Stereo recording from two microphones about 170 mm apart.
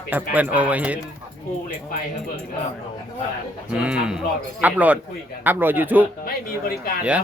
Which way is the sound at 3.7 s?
5° right (ahead or behind).